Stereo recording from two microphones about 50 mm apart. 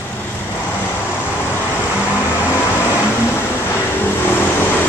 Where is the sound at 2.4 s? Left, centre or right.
Left.